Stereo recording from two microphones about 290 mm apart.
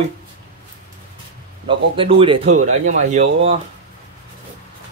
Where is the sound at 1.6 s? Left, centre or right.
Centre.